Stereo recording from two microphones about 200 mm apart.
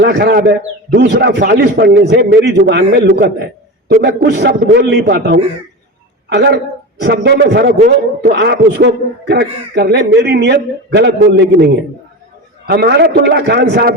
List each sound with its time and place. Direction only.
0.0 s a man's voice: 55° right (ahead or behind)